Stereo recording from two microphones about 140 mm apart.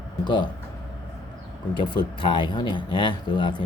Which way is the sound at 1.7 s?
35° left (ahead or behind).